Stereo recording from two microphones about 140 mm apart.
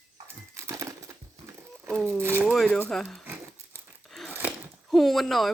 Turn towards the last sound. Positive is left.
turn(degrees=0)  # may be behind; listen again after turning